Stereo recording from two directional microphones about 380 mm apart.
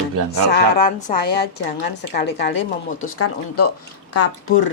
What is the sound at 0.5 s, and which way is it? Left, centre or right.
Speech, left.